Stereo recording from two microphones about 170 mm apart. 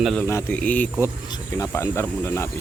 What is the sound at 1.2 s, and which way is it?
Speech, 20° left (ahead or behind).